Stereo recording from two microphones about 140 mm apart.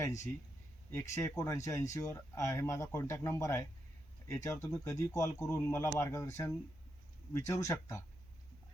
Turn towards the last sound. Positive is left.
turn(degrees=20)  # may be behind; listen again after turning